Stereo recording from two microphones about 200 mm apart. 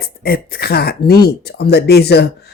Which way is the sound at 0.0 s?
50° left (ahead or behind).